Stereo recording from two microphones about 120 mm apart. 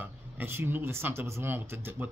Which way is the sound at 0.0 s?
20° right (ahead or behind).